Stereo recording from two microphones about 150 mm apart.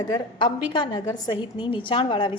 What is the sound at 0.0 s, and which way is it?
A woman's voice, 30° left (ahead or behind).